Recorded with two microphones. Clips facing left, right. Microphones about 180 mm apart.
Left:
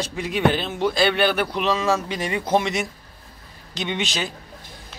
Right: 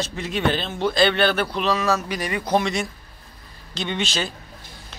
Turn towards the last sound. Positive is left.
turn(degrees=15)  # may be behind; listen again after turning